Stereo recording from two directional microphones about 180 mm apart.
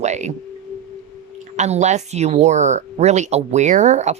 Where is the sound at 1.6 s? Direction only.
40° right (ahead or behind).